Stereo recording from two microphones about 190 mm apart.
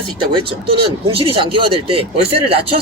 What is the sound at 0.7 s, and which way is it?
Speech, 30° right (ahead or behind).